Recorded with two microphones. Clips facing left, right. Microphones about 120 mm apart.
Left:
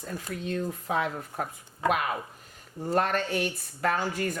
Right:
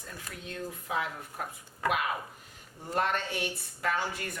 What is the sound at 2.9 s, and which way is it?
Speech, 45° left (ahead or behind).